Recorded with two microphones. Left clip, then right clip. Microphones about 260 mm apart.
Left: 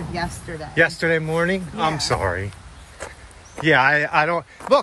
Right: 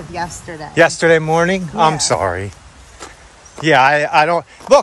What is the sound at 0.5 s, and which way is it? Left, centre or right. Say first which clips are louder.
Speech: right 6 dB; centre.